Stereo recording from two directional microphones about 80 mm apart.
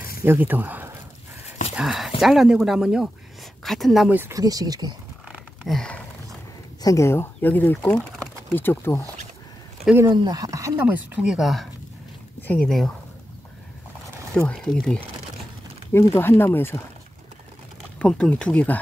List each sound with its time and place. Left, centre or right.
0.0 s speech: right
1.8 s speech: centre
3.6 s speech: centre
4.3 s speech: right
5.7 s speech: centre
6.8 s speech: left
7.1 s speech: left
10.3 s speech: right
11.1 s speech: centre
12.4 s a sound: left
12.6 s speech: centre
14.3 s speech: centre
15.9 s speech: left
17.9 s speech: centre